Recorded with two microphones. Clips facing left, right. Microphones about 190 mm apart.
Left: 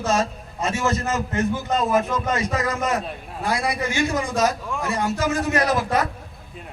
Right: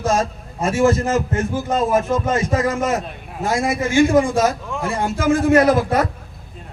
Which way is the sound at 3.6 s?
25° right (ahead or behind).